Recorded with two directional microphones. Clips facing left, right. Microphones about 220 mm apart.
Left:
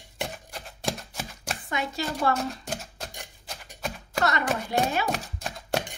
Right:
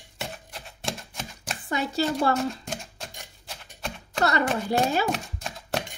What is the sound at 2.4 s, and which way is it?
Music, centre (ahead or behind).